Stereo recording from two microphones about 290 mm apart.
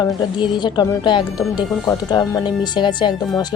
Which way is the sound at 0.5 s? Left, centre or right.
Centre.